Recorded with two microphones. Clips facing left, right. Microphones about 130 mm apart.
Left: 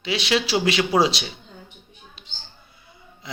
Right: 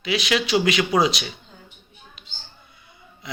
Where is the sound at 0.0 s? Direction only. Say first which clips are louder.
Even; 30° left (ahead or behind).